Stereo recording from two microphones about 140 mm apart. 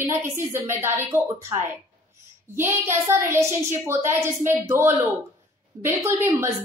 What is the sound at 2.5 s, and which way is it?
A woman's voice, 15° right (ahead or behind).